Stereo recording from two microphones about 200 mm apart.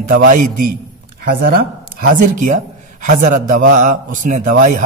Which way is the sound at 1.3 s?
45° right (ahead or behind).